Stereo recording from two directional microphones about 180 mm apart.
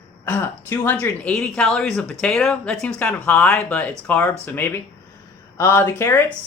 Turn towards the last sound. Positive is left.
turn(degrees=15)  # may be behind; listen again after turning